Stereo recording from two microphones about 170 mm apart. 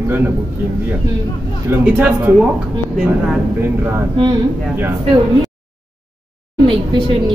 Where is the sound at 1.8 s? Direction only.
10° right (ahead or behind).